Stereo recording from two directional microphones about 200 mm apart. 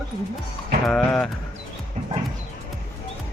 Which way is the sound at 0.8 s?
Centre (ahead or behind).